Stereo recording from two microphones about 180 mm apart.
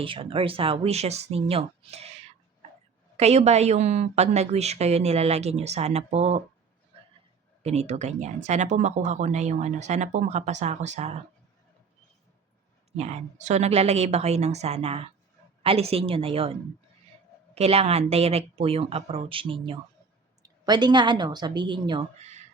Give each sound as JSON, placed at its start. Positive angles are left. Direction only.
{"t": 0.0, "sound": "a woman's voice", "side_deg": -30}
{"t": 7.6, "sound": "a woman's voice", "side_deg": -35}
{"t": 13.0, "sound": "a woman's voice", "side_deg": -40}